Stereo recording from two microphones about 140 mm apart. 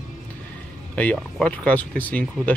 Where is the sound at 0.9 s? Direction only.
10° left (ahead or behind).